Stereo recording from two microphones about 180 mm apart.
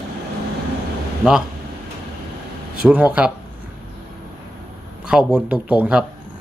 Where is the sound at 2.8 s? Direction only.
5° right (ahead or behind).